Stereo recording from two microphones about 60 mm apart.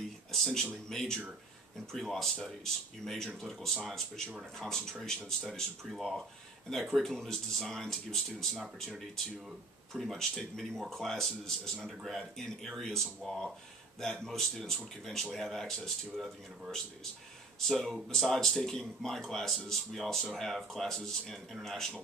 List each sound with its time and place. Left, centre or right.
0.3 s speech: centre
5.9 s speech: centre
7.0 s speech: centre
9.9 s speech: centre
17.6 s speech: centre